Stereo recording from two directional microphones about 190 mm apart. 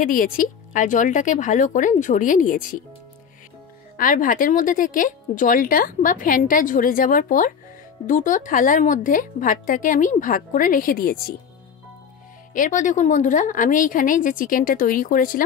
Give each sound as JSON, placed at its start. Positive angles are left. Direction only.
{"t": 0.0, "sound": "speech", "side_deg": 45}
{"t": 3.9, "sound": "speech", "side_deg": 45}
{"t": 12.5, "sound": "speech", "side_deg": 40}